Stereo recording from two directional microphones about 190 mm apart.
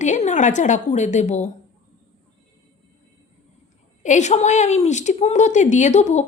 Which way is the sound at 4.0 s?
40° left (ahead or behind).